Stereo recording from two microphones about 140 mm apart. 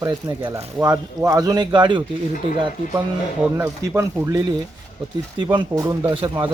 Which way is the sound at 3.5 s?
20° right (ahead or behind).